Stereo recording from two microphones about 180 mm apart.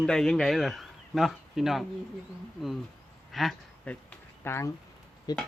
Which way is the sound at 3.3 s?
Centre (ahead or behind).